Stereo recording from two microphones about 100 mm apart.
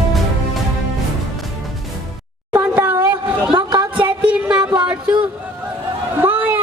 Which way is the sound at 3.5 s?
50° right (ahead or behind).